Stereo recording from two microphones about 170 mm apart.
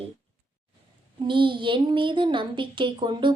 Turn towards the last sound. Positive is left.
turn(degrees=-25)  # may be behind; listen again after turning